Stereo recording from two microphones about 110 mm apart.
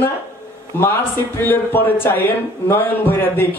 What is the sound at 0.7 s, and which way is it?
A man's voice, 20° left (ahead or behind).